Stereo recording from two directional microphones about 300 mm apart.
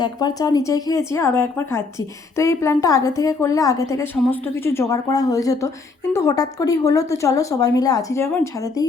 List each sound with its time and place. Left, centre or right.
0.0 s speech: centre